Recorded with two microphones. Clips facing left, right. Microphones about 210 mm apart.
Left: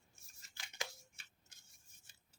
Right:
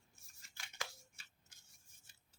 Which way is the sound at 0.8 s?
20° left (ahead or behind).